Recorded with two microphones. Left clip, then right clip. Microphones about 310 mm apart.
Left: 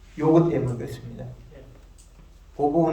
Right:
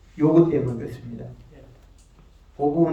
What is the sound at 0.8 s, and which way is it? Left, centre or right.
Speech, centre.